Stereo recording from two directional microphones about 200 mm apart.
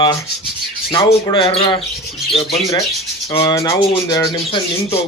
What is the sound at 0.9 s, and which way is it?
Speech, 25° left (ahead or behind).